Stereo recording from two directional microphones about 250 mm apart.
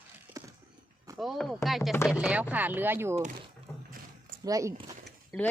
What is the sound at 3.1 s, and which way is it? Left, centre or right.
Speech, right.